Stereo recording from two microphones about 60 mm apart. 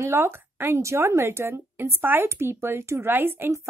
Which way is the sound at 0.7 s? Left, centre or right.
Right.